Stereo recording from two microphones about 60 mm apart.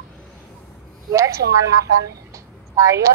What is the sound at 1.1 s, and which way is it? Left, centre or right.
Speech, right.